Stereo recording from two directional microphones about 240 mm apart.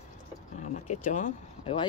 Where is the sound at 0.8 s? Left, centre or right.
Left.